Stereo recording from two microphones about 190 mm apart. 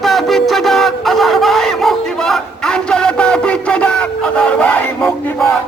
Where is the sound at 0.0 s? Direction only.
Centre (ahead or behind).